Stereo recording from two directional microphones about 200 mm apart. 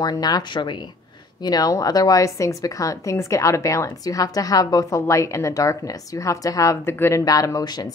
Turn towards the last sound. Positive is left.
turn(degrees=20)  # may be behind; listen again after turning